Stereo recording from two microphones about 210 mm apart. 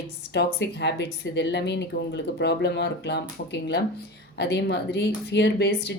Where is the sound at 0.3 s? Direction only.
55° left (ahead or behind).